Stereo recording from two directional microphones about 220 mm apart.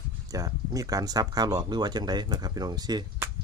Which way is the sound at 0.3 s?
15° right (ahead or behind).